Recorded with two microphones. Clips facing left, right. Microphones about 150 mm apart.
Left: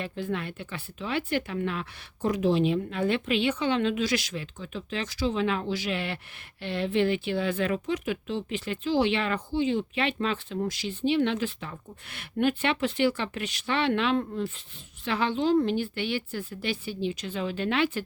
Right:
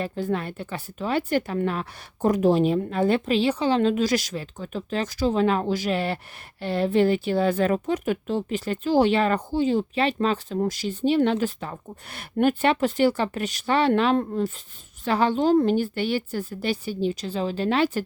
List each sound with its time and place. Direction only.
0.0 s speech: 40° right (ahead or behind)